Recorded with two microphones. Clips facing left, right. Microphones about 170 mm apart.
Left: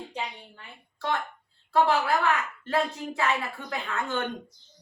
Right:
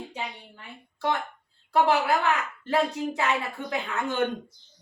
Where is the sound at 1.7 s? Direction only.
20° right (ahead or behind).